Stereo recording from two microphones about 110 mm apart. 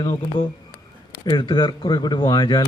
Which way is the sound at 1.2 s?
45° left (ahead or behind).